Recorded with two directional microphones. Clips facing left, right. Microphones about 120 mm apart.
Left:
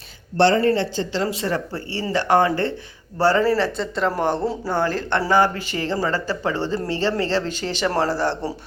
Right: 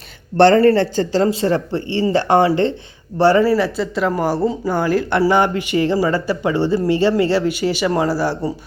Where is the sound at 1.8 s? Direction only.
35° left (ahead or behind).